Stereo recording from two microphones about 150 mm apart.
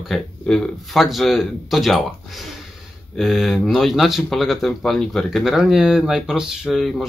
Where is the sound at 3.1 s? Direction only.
Centre (ahead or behind).